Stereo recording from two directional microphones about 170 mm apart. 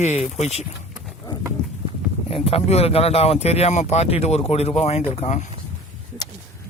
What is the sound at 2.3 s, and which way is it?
Speech, 35° left (ahead or behind).